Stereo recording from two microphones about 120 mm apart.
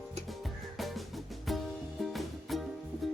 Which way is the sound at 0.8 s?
Centre (ahead or behind).